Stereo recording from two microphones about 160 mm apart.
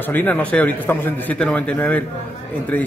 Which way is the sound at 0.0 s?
10° left (ahead or behind).